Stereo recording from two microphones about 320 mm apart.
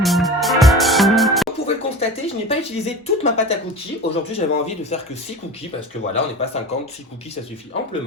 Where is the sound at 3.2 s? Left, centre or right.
Centre.